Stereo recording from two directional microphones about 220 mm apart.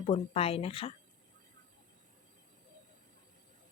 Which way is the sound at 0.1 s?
25° left (ahead or behind).